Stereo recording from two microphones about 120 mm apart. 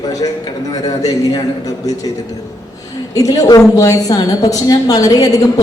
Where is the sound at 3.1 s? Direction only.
30° left (ahead or behind).